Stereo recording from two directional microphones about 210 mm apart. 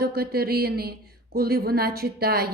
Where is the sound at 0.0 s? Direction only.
45° right (ahead or behind).